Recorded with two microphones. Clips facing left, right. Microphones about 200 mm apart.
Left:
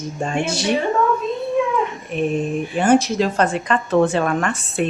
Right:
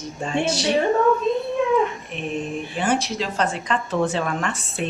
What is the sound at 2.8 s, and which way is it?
A woman's voice, 45° left (ahead or behind).